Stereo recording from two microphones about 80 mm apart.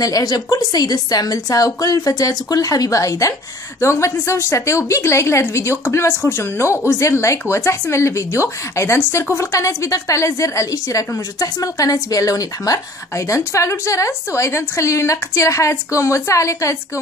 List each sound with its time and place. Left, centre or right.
0.0 s a woman's voice: left